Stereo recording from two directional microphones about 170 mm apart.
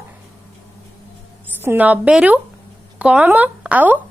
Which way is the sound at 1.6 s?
10° right (ahead or behind).